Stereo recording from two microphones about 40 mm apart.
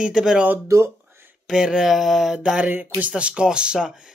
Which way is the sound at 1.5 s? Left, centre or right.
Centre.